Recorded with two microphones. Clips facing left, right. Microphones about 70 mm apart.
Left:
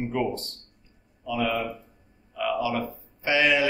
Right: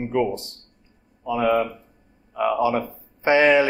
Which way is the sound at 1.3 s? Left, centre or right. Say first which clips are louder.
Right 6 dB; right.